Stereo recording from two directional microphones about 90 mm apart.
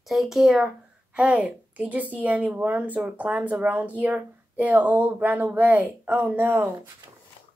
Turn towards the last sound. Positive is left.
turn(degrees=-20)  # may be behind; listen again after turning